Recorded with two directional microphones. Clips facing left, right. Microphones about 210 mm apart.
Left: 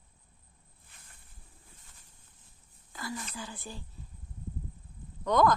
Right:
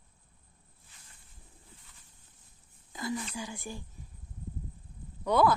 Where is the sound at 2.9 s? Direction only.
20° right (ahead or behind).